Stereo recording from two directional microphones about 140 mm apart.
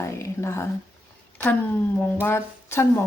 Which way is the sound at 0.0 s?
20° left (ahead or behind).